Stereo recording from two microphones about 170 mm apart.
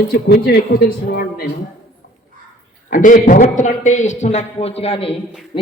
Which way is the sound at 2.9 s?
50° left (ahead or behind).